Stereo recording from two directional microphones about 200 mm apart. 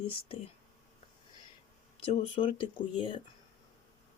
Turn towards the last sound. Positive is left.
turn(degrees=25)  # may be behind; listen again after turning